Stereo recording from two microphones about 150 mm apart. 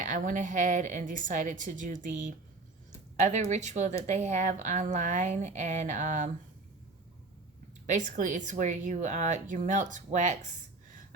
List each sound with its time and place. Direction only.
0.0 s a woman's voice: 60° right (ahead or behind)
3.5 s speech: 50° right (ahead or behind)
7.9 s a woman's voice: 55° right (ahead or behind)